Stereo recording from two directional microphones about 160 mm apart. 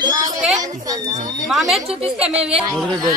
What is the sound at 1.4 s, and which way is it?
Speech, centre (ahead or behind).